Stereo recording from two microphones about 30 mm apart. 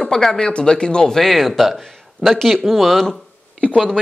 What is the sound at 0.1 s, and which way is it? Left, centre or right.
Speech, left.